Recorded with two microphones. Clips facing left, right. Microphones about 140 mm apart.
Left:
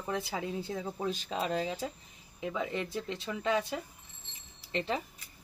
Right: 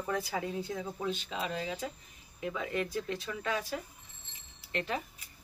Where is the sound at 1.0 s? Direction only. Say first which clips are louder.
Left 3 dB; 40° left (ahead or behind).